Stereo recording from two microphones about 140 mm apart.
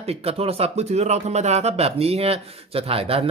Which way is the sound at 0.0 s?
45° right (ahead or behind).